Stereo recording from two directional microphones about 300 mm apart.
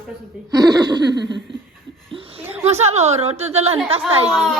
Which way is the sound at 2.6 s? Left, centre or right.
Right.